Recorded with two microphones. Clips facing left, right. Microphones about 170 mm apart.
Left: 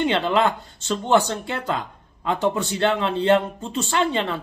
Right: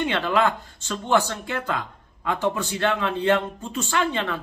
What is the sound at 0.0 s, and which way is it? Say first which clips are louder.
Speech: left 2 dB; 25° left (ahead or behind).